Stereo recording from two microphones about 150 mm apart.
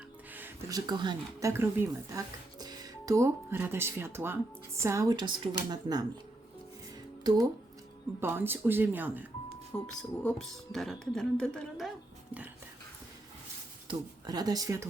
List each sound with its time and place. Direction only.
0.7 s speech: 30° right (ahead or behind)
8.2 s speech: 15° right (ahead or behind)
9.8 s speech: 5° left (ahead or behind)
13.8 s speech: 25° right (ahead or behind)